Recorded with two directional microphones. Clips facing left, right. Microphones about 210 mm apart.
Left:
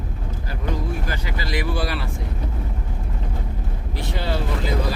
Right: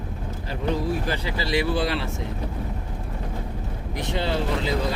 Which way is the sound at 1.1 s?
25° right (ahead or behind).